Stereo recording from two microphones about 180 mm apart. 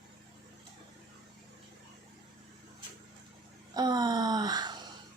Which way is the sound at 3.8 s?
20° right (ahead or behind).